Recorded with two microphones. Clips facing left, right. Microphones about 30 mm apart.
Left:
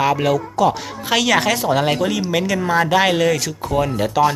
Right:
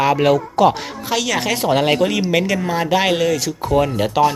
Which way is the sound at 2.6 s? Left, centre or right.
Centre.